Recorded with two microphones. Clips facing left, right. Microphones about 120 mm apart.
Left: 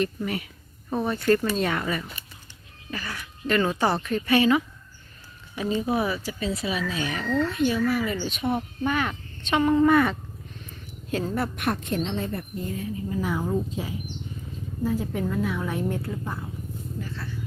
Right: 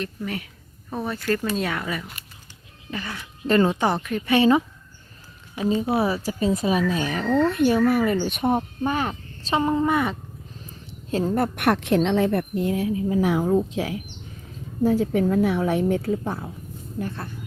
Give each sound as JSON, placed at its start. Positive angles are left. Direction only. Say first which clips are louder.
{"t": 0.0, "sound": "speech", "louder": "left 3 dB", "side_deg": 5}
{"t": 2.9, "sound": "speech", "louder": "right 2 dB", "side_deg": -20}
{"t": 3.4, "sound": "speech", "louder": "right 4 dB", "side_deg": -30}
{"t": 3.8, "sound": "speech", "louder": "right 1 dB", "side_deg": -15}
{"t": 4.4, "sound": "speech", "louder": "right 3 dB", "side_deg": -30}
{"t": 5.5, "sound": "speech", "louder": "right 3 dB", "side_deg": -20}
{"t": 6.2, "sound": "speech", "louder": "right 6 dB", "side_deg": -45}
{"t": 7.3, "sound": "speech", "louder": "right 5 dB", "side_deg": -55}
{"t": 9.8, "sound": "speech", "louder": "left 3 dB", "side_deg": -15}
{"t": 11.1, "sound": "speech", "louder": "right 4 dB", "side_deg": -35}
{"t": 11.5, "sound": "a woman's voice", "louder": "right 7 dB", "side_deg": -70}
{"t": 17.0, "sound": "speech", "louder": "right 7 dB", "side_deg": -55}